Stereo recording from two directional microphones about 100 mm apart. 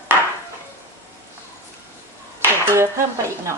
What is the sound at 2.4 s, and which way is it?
Dishes, 25° right (ahead or behind).